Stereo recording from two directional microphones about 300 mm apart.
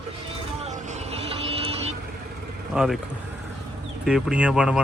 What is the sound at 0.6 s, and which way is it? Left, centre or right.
Vehicle, right.